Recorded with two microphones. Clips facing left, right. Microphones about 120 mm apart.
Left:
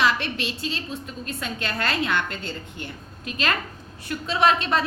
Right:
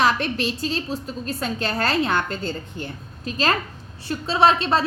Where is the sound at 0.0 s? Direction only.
40° right (ahead or behind).